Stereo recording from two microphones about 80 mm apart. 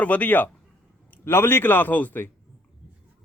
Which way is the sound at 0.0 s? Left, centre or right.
Left.